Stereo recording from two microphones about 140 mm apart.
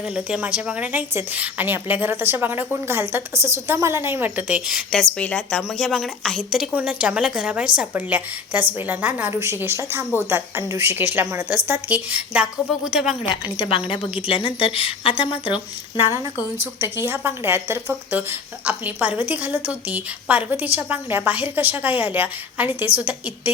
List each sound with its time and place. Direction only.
0.0 s a woman's voice: 5° right (ahead or behind)
13.6 s speech: 40° left (ahead or behind)
16.1 s a woman's voice: 20° right (ahead or behind)